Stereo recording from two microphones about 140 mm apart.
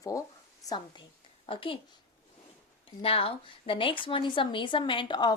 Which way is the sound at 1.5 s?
40° left (ahead or behind).